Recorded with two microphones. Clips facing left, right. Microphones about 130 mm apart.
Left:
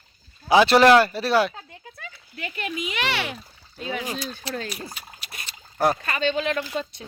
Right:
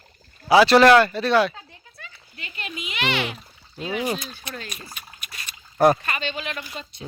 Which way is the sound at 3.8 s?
10° right (ahead or behind).